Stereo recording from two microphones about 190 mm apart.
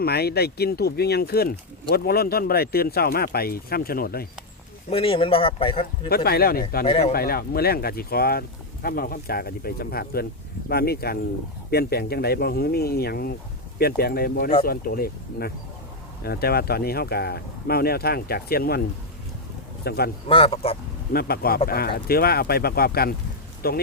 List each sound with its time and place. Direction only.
0.0 s speech: 55° left (ahead or behind)
4.9 s speech: 30° left (ahead or behind)
6.1 s speech: 55° left (ahead or behind)
6.8 s speech: 30° left (ahead or behind)
7.1 s speech: 55° left (ahead or behind)
19.8 s speech: 55° left (ahead or behind)
20.2 s speech: 30° left (ahead or behind)
21.1 s speech: 55° left (ahead or behind)